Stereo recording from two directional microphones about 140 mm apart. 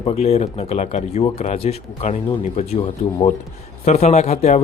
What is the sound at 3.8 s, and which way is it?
Speech, 50° left (ahead or behind).